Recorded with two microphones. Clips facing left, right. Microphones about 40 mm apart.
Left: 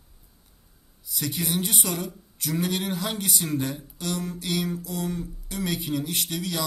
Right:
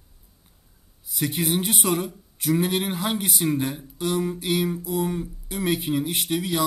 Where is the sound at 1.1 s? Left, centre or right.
Right.